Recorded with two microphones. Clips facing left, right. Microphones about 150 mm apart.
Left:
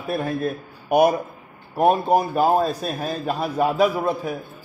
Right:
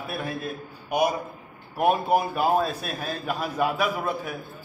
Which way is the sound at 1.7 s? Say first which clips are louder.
Left 4 dB; 40° left (ahead or behind).